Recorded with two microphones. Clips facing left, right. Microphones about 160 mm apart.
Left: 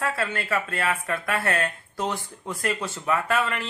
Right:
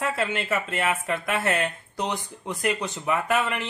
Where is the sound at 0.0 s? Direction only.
20° right (ahead or behind).